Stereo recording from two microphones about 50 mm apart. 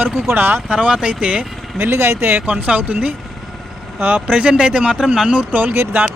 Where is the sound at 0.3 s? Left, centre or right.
Right.